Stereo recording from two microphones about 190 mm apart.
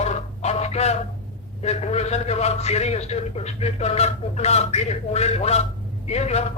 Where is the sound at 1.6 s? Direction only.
35° left (ahead or behind).